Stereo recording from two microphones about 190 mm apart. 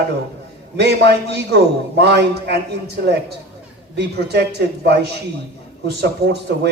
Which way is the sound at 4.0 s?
60° right (ahead or behind).